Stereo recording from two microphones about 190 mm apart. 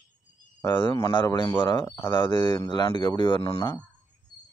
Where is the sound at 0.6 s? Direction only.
25° left (ahead or behind).